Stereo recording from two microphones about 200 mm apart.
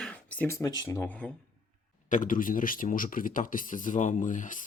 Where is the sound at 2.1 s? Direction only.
40° left (ahead or behind).